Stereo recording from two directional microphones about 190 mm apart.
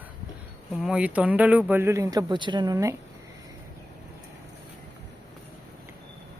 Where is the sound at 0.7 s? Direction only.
5° right (ahead or behind).